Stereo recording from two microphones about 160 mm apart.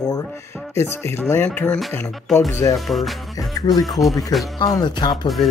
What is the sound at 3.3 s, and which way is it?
Music, 20° left (ahead or behind).